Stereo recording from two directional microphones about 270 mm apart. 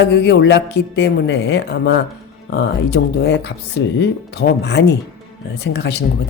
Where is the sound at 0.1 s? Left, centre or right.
Left.